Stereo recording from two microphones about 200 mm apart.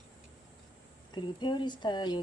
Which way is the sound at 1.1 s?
20° left (ahead or behind).